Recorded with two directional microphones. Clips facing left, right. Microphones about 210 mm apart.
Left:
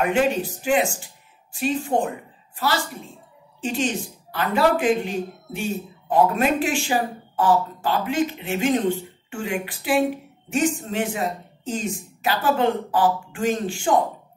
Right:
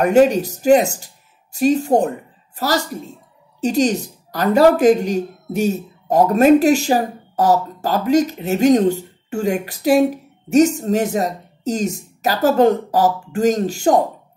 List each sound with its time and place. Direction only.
0.0 s a woman's voice: 40° right (ahead or behind)